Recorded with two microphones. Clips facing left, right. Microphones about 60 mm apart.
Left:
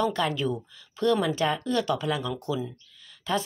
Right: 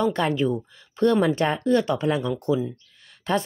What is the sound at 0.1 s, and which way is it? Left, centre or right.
Speech, right.